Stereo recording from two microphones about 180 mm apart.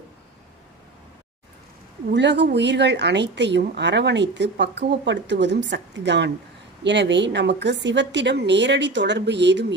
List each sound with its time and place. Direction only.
2.1 s speech: 75° right (ahead or behind)